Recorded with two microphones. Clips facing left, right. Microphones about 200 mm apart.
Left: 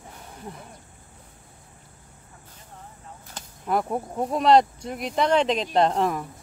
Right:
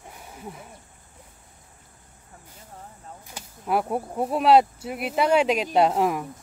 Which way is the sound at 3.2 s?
10° right (ahead or behind).